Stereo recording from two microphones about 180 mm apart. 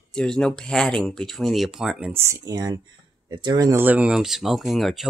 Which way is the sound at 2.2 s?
15° right (ahead or behind).